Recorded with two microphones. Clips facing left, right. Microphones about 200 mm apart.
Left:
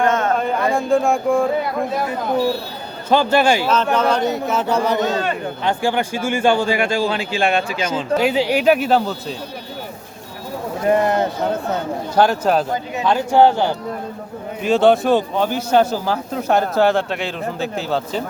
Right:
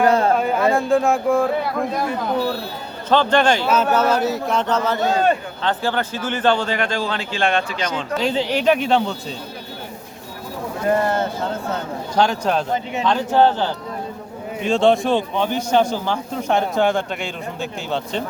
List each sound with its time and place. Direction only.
0.0 s a sound: 35° right (ahead or behind)
0.3 s speech: 5° right (ahead or behind)
3.1 s speech: 10° left (ahead or behind)
3.7 s speech: 10° right (ahead or behind)
10.8 s speech: 15° left (ahead or behind)